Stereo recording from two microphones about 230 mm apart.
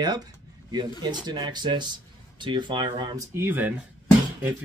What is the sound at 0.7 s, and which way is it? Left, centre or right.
Speech, centre.